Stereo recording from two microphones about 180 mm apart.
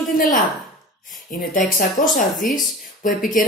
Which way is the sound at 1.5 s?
50° left (ahead or behind).